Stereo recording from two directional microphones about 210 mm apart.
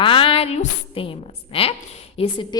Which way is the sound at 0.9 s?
25° left (ahead or behind).